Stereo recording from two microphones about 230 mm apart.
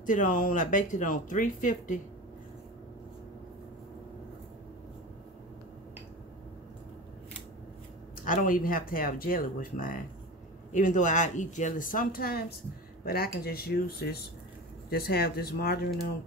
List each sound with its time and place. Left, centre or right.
0.0 s speech: left
8.2 s speech: left